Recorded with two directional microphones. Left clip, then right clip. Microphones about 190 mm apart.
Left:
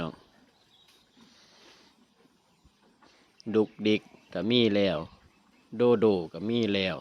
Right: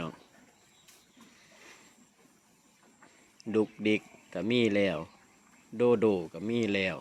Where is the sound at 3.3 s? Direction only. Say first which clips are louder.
Left 3 dB; 15° left (ahead or behind).